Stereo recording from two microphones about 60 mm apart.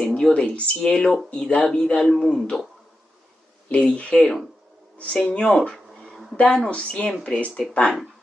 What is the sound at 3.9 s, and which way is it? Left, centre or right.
Speech, centre.